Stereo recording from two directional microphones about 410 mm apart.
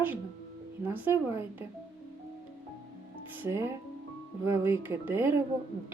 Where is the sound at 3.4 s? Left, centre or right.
Centre.